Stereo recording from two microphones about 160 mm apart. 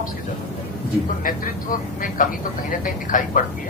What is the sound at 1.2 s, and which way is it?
Speech, 60° left (ahead or behind).